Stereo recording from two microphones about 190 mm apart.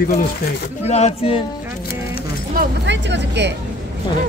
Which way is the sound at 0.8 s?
35° left (ahead or behind).